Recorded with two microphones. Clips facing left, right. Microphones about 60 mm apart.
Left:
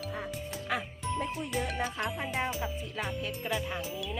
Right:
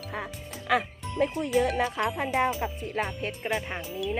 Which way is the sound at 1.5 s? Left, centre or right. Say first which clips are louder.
Right 9 dB; right.